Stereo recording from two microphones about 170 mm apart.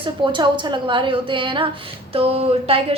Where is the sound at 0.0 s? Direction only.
30° right (ahead or behind).